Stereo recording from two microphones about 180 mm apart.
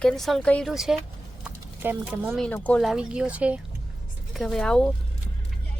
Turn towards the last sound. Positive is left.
turn(degrees=5)  # may be behind; listen again after turning